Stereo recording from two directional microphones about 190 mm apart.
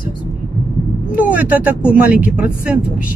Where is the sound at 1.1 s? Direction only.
5° right (ahead or behind).